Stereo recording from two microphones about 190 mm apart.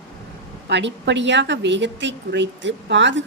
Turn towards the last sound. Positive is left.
turn(degrees=-70)  # may be behind; listen again after turning